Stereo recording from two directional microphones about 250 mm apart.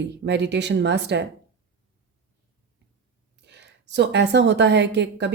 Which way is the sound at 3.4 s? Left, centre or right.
Right.